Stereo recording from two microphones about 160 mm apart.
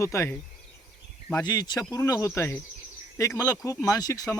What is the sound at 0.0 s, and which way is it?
Speech, 15° left (ahead or behind).